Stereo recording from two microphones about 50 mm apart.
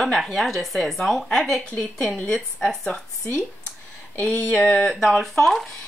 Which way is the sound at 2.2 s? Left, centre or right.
Left.